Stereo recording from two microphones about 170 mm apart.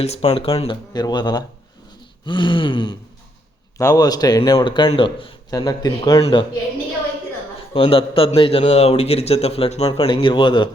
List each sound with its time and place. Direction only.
0.0 s a man's voice: 40° left (ahead or behind)
7.7 s a man's voice: 35° left (ahead or behind)